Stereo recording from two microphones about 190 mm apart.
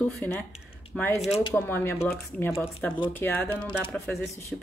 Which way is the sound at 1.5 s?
10° left (ahead or behind).